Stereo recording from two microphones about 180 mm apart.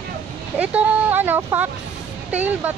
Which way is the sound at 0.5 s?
10° right (ahead or behind).